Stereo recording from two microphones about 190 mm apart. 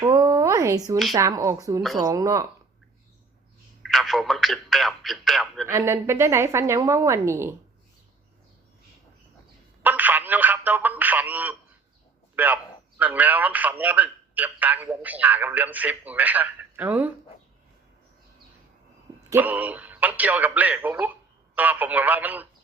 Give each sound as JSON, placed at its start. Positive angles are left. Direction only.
{"t": 0.0, "sound": "a sound", "side_deg": -20}
{"t": 1.1, "sound": "a man's voice", "side_deg": -15}
{"t": 3.8, "sound": "a man's voice", "side_deg": 0}
{"t": 5.6, "sound": "a man's voice", "side_deg": -15}
{"t": 9.8, "sound": "telephone", "side_deg": -10}
{"t": 12.4, "sound": "a man's voice", "side_deg": -10}
{"t": 19.3, "sound": "a man's voice", "side_deg": -10}